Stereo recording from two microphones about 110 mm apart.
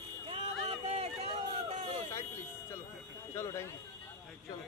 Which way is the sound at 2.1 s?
20° left (ahead or behind).